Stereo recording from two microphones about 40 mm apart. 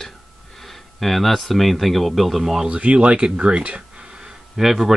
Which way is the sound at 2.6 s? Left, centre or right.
Right.